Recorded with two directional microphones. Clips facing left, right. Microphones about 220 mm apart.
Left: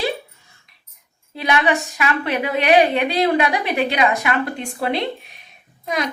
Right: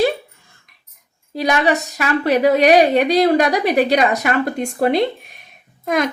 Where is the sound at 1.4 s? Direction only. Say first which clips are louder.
Right 2 dB; 40° right (ahead or behind).